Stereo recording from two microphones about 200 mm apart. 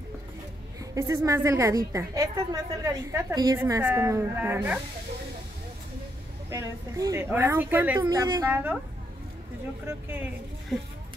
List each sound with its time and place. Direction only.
0.7 s a woman's voice: 15° right (ahead or behind)
6.5 s a woman's voice: 15° right (ahead or behind)
9.8 s a woman's voice: 10° right (ahead or behind)